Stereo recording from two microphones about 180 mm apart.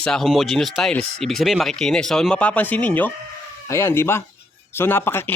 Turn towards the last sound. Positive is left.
turn(degrees=10)  # may be behind; listen again after turning